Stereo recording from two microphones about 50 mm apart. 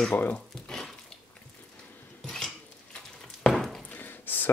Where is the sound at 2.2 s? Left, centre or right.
Centre.